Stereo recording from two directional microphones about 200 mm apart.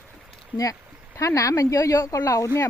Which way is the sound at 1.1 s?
15° left (ahead or behind).